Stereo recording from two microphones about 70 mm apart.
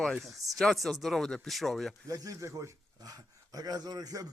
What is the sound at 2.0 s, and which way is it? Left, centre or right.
Speech, right.